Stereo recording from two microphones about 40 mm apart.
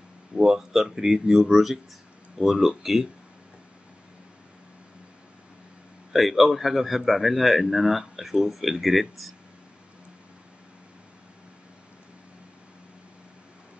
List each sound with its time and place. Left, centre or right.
0.4 s speech: centre
6.1 s speech: centre